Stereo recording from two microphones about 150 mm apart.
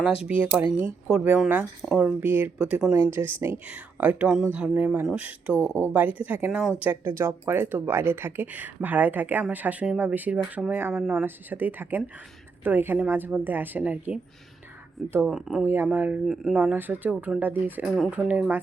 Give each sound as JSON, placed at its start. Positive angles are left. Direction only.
{"t": 0.5, "sound": "speech", "side_deg": -15}
{"t": 5.5, "sound": "speech", "side_deg": 10}
{"t": 6.1, "sound": "speech", "side_deg": -10}
{"t": 15.3, "sound": "speech", "side_deg": -5}
{"t": 15.6, "sound": "speech", "side_deg": -15}
{"t": 17.8, "sound": "speech", "side_deg": 0}